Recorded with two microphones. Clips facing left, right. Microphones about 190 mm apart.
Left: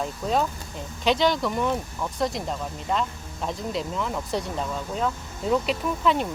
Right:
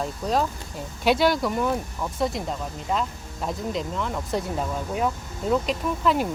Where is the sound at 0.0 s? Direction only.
Centre (ahead or behind).